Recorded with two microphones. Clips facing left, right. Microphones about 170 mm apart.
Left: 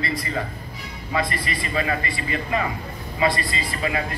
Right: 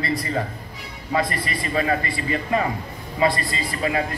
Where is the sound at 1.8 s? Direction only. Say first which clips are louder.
Right 3 dB; 40° right (ahead or behind).